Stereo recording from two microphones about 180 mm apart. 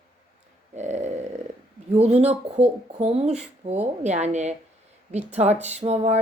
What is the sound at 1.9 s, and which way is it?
Speech, 35° right (ahead or behind).